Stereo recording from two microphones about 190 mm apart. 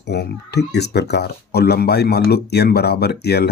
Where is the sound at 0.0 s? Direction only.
60° left (ahead or behind).